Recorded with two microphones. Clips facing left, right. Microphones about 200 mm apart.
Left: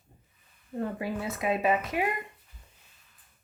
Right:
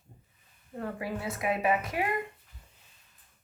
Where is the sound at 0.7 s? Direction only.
25° left (ahead or behind).